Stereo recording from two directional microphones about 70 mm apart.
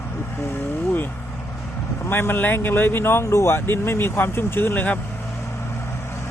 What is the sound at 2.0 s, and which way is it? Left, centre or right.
Speech, left.